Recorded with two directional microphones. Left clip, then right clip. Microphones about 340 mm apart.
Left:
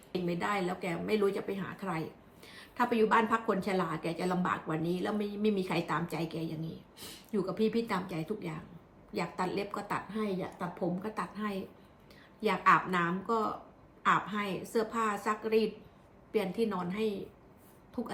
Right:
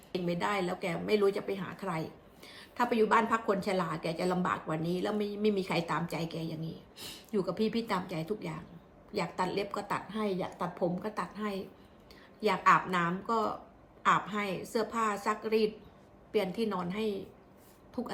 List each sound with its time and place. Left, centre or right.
0.1 s a woman's voice: centre